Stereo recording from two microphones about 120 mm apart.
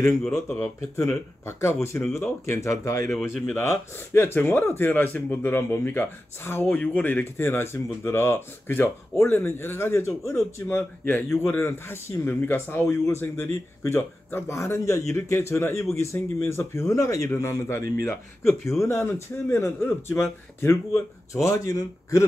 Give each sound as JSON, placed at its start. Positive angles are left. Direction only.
{"t": 0.3, "sound": "speech", "side_deg": 25}
{"t": 3.1, "sound": "speech", "side_deg": 0}
{"t": 3.5, "sound": "speech", "side_deg": 20}